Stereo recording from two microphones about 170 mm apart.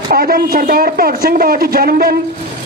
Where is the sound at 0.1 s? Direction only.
60° right (ahead or behind).